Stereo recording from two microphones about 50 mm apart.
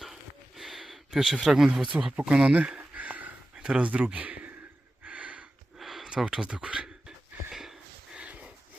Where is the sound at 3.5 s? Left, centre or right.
Centre.